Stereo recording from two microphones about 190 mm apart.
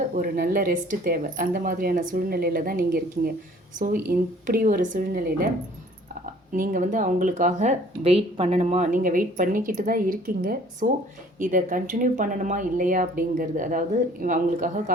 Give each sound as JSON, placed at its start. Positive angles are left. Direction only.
{"t": 0.2, "sound": "speech", "side_deg": -50}
{"t": 6.5, "sound": "speech", "side_deg": -45}